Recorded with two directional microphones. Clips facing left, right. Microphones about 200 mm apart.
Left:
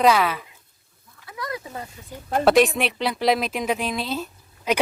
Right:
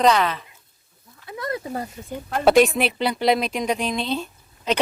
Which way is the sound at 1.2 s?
25° right (ahead or behind).